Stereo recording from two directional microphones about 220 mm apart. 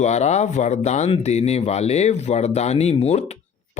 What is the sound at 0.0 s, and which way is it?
Speech, 30° left (ahead or behind).